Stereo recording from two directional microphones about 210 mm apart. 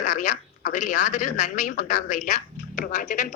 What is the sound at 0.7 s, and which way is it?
Speech, 35° left (ahead or behind).